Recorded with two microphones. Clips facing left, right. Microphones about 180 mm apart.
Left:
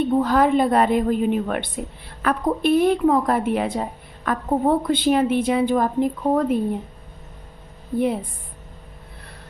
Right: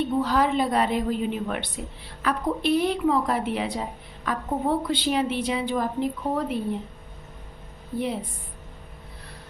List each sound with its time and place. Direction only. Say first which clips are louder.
0.0 s a woman's voice: left 5 dB; 50° left (ahead or behind)
7.9 s a woman's voice: left 6 dB; 55° left (ahead or behind)